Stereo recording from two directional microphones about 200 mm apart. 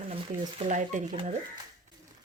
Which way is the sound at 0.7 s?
40° right (ahead or behind).